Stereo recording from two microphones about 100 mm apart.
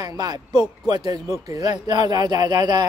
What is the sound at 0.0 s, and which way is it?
Speech, 40° right (ahead or behind).